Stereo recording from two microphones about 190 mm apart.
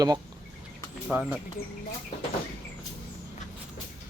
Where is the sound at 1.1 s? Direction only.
5° right (ahead or behind).